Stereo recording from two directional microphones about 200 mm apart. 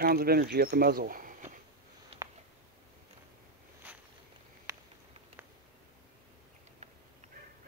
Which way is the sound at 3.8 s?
10° right (ahead or behind).